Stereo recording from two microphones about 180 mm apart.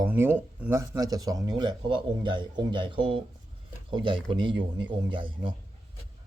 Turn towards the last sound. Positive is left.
turn(degrees=-25)  # may be behind; listen again after turning